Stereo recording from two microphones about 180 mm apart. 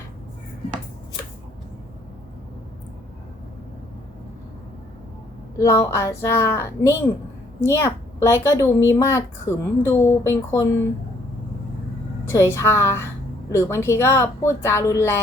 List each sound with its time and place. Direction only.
5.5 s a woman's voice: 15° left (ahead or behind)
12.3 s a woman's voice: 15° left (ahead or behind)